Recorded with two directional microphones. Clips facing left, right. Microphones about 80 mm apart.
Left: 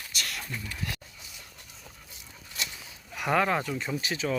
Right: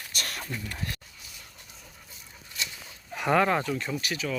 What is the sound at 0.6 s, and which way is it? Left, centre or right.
Speech, right.